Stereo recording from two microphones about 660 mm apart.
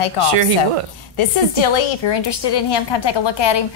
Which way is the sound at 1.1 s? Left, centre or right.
Left.